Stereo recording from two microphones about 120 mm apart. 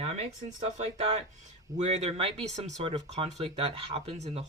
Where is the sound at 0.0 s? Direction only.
65° right (ahead or behind).